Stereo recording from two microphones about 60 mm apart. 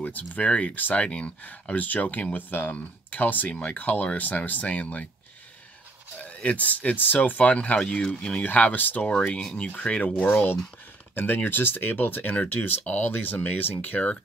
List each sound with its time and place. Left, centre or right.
0.0 s speech: left
6.1 s speech: left
8.4 s speech: left